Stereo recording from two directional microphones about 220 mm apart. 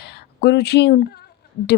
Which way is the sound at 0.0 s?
50° left (ahead or behind).